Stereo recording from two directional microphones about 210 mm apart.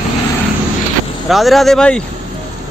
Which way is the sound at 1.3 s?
Centre (ahead or behind).